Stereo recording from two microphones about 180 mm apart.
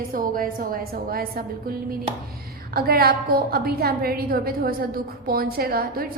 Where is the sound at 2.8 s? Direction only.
55° right (ahead or behind).